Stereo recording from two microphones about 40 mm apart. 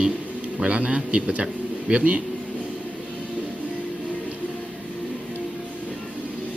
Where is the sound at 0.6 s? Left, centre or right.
Right.